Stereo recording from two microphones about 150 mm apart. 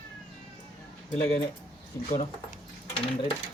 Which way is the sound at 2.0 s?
15° left (ahead or behind).